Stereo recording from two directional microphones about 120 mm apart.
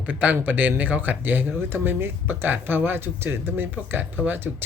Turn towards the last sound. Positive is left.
turn(degrees=-15)  # may be behind; listen again after turning